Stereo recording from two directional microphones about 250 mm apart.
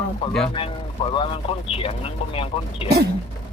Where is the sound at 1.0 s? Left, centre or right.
Left.